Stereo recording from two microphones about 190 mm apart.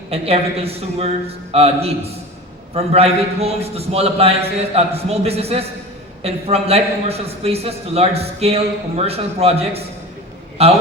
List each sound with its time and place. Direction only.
0.1 s a man's voice: 30° right (ahead or behind)